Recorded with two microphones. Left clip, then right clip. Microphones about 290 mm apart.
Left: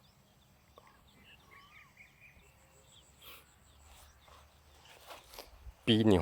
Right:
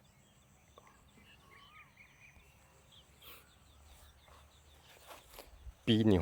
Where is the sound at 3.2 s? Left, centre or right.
Centre.